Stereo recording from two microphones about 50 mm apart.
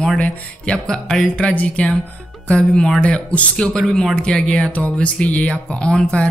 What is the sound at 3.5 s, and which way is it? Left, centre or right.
Speech, centre.